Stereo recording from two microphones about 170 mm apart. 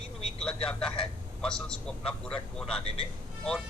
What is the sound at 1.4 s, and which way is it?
A man's voice, 5° left (ahead or behind).